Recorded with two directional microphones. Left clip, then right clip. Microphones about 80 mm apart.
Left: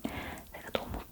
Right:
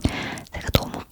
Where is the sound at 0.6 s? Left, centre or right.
Right.